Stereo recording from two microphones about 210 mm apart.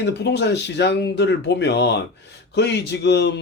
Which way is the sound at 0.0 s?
55° left (ahead or behind).